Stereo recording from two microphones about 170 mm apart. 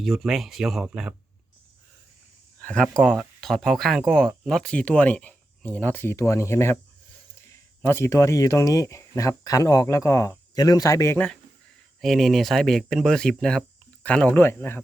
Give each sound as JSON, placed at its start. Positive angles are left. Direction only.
{"t": 0.0, "sound": "speech", "side_deg": 0}
{"t": 2.6, "sound": "speech", "side_deg": 5}
{"t": 7.8, "sound": "speech", "side_deg": 15}